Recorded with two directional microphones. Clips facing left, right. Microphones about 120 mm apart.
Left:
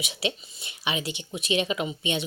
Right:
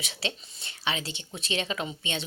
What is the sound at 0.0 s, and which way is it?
Speech, 15° left (ahead or behind).